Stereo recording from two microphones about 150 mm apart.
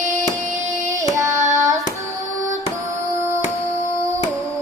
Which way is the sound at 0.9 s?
20° right (ahead or behind).